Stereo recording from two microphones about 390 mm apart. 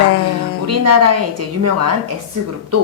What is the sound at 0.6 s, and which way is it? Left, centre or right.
Speech, right.